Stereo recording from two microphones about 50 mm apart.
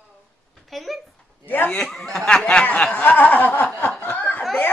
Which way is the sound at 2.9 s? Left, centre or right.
Left.